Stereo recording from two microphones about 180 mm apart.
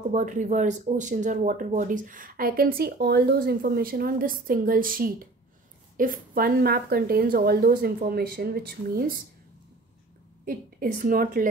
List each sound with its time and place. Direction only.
0.1 s speech: 45° right (ahead or behind)
10.4 s speech: 50° right (ahead or behind)